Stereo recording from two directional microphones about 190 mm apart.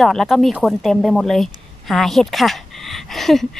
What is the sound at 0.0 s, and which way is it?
Speech, centre (ahead or behind).